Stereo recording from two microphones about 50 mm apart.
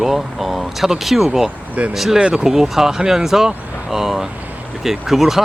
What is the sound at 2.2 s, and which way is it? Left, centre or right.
Speech, centre.